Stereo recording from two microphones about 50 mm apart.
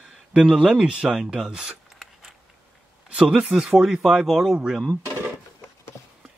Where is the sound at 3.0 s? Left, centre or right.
Centre.